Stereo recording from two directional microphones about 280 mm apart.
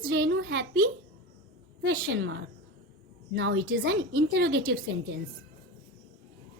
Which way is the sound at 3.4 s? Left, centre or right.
Right.